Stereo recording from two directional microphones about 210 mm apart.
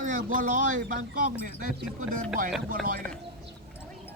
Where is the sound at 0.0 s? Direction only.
40° right (ahead or behind).